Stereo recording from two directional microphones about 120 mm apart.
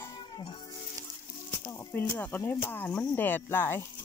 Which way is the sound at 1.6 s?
20° left (ahead or behind).